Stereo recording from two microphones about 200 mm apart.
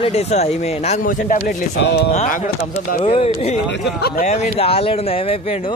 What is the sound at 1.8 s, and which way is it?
Speech, 55° left (ahead or behind).